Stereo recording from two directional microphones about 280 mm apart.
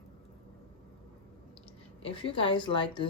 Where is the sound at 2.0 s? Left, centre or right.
Centre.